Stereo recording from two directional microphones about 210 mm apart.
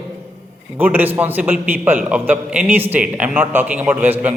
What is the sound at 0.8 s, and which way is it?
A man's voice, 10° right (ahead or behind).